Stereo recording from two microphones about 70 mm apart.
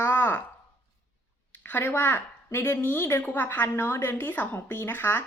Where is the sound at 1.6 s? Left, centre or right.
Left.